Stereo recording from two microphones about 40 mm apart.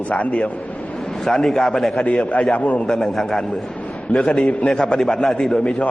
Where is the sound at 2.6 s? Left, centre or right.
Left.